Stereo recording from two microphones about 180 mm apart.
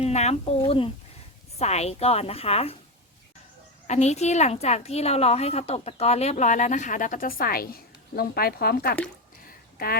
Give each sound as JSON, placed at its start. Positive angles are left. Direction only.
{"t": 0.0, "sound": "a woman's voice", "side_deg": 35}
{"t": 3.8, "sound": "a woman's voice", "side_deg": 40}